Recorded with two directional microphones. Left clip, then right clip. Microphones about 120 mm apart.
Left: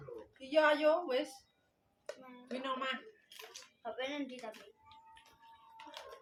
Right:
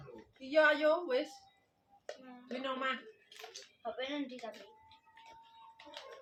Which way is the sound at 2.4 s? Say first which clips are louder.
Right 1 dB; 10° right (ahead or behind).